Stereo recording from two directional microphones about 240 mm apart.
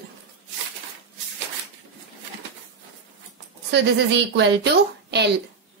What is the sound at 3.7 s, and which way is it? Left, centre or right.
Speech, right.